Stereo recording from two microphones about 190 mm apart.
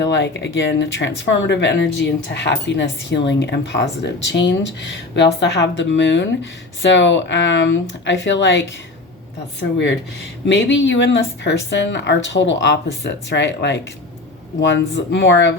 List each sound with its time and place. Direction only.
0.0 s speech: 70° left (ahead or behind)
10.4 s speech: 70° left (ahead or behind)